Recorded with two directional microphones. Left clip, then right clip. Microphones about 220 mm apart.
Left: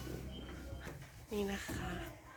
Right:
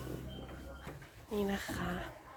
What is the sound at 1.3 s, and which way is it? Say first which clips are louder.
Speech: right 3 dB; 15° right (ahead or behind).